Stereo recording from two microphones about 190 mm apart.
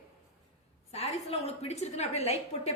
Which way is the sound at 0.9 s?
35° left (ahead or behind).